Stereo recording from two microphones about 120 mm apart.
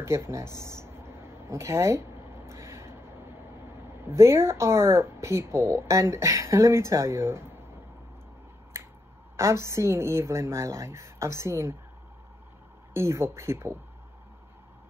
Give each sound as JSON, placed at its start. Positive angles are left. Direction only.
{"t": 0.7, "sound": "a sound", "side_deg": -20}
{"t": 4.1, "sound": "speech", "side_deg": -20}
{"t": 9.4, "sound": "speech", "side_deg": -25}
{"t": 12.9, "sound": "speech", "side_deg": -20}